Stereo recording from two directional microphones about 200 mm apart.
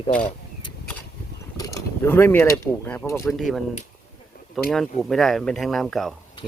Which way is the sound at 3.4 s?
Centre (ahead or behind).